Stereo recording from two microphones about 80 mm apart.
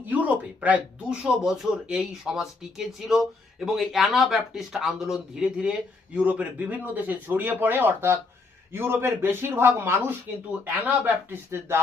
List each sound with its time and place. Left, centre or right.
0.0 s speech: right